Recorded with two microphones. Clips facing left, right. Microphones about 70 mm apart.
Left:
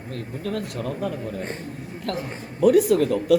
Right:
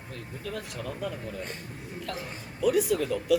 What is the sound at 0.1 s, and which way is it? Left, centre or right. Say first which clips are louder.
Speech: left 8 dB; left.